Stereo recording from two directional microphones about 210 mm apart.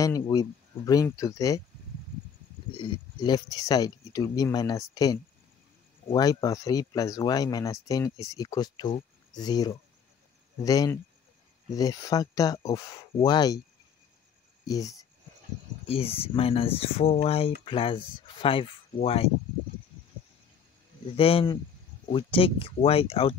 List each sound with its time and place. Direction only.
0.0 s speech: 15° left (ahead or behind)
2.7 s speech: 20° left (ahead or behind)
14.7 s speech: 15° left (ahead or behind)
15.9 s speech: 25° left (ahead or behind)
21.2 s speech: 25° left (ahead or behind)